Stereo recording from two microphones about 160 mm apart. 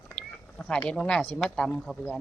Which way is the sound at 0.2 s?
5° left (ahead or behind).